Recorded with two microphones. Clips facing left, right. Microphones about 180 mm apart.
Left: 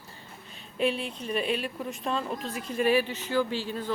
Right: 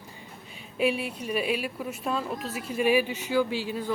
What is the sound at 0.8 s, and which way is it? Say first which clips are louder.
A woman's voice: right 2 dB; 10° right (ahead or behind).